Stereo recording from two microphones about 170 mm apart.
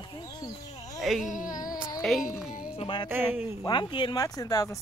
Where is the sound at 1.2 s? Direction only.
50° left (ahead or behind).